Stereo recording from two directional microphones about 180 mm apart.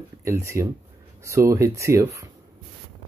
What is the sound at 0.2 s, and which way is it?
Speech, 15° right (ahead or behind).